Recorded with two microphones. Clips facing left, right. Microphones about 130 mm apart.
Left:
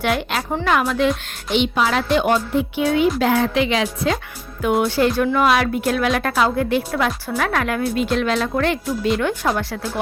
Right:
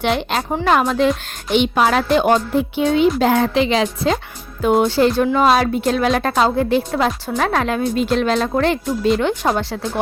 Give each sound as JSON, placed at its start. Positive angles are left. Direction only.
{"t": 0.0, "sound": "a woman's voice", "side_deg": -25}
{"t": 1.5, "sound": "speech", "side_deg": -50}
{"t": 2.1, "sound": "a woman's voice", "side_deg": -35}